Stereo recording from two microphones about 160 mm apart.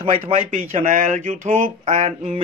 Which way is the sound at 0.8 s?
55° right (ahead or behind).